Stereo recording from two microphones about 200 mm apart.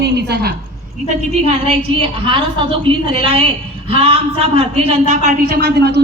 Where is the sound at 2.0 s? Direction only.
25° right (ahead or behind).